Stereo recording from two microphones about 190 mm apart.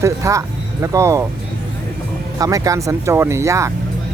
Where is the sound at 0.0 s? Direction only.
15° right (ahead or behind).